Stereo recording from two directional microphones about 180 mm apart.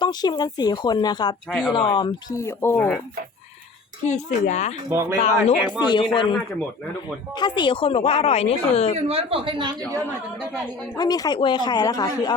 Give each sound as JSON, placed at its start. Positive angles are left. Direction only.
{"t": 0.0, "sound": "speech", "side_deg": 25}
{"t": 4.1, "sound": "speech", "side_deg": 40}
{"t": 4.9, "sound": "speech", "side_deg": -15}
{"t": 5.2, "sound": "speech", "side_deg": 35}
{"t": 7.3, "sound": "speech", "side_deg": 25}
{"t": 9.0, "sound": "a woman's voice", "side_deg": -30}
{"t": 10.9, "sound": "speech", "side_deg": 20}